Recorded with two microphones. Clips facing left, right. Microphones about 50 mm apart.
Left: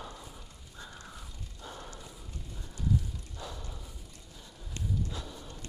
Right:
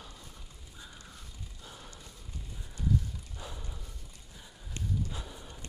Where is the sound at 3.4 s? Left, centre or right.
Centre.